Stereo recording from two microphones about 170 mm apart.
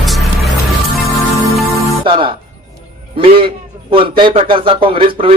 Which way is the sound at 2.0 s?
30° right (ahead or behind).